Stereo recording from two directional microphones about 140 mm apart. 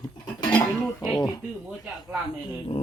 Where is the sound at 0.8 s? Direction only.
5° left (ahead or behind).